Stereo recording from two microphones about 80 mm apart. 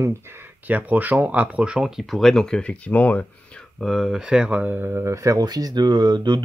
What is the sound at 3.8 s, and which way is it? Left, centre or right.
Speech, centre.